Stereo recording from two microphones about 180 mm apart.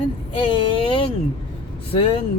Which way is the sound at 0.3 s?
30° left (ahead or behind).